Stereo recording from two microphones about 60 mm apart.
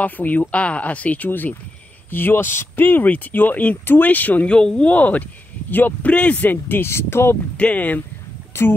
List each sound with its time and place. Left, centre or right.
0.0 s speech: left
4.6 s speech: centre
4.8 s speech: left
7.5 s speech: left
8.5 s speech: left